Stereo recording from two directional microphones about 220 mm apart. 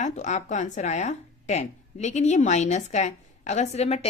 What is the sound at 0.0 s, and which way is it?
A woman's voice, 30° left (ahead or behind).